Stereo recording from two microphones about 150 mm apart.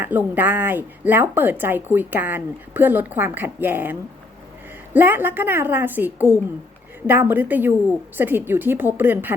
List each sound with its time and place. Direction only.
0.0 s speech: 10° right (ahead or behind)
4.9 s speech: 15° right (ahead or behind)